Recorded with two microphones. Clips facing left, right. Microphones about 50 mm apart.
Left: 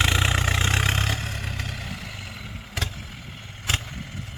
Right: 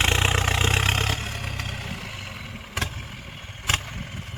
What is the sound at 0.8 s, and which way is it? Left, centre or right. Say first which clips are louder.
Vehicle: right 1 dB; right.